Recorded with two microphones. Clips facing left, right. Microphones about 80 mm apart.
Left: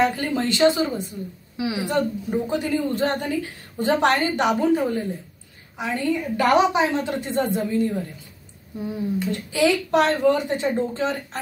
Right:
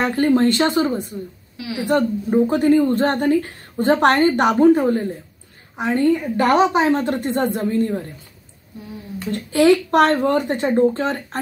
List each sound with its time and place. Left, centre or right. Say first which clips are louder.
0.0 s a woman's voice: right 5 dB; right
9.3 s a woman's voice: right 8 dB; right